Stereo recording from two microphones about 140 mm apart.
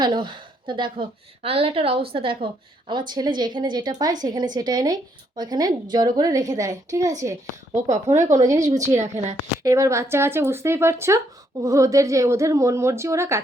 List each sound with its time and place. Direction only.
0.0 s a woman's voice: 35° right (ahead or behind)
8.5 s a woman's voice: 60° right (ahead or behind)
9.6 s a woman's voice: 25° right (ahead or behind)